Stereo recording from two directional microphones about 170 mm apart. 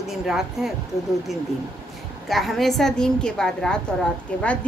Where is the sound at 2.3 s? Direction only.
Centre (ahead or behind).